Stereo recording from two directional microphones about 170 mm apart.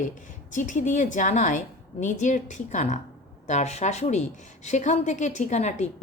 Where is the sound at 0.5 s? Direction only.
50° left (ahead or behind).